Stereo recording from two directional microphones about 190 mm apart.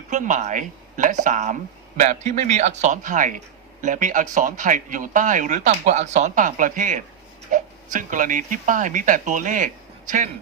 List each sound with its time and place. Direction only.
0.1 s a man's voice: 40° right (ahead or behind)